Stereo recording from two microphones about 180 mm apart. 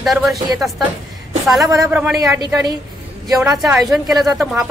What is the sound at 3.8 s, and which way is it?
Speech, centre (ahead or behind).